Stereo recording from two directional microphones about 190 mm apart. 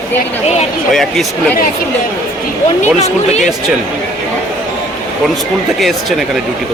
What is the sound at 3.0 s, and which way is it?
Speech, 35° left (ahead or behind).